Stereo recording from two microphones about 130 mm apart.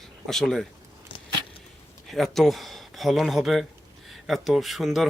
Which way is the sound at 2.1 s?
Centre (ahead or behind).